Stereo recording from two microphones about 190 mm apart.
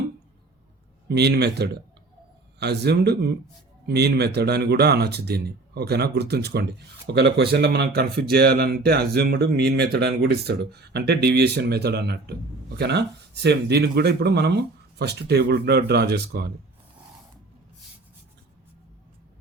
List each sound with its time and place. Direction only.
1.0 s speech: 60° right (ahead or behind)